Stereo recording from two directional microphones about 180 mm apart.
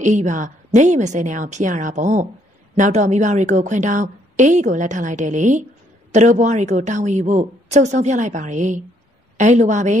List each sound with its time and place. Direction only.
0.0 s a woman's voice: 45° right (ahead or behind)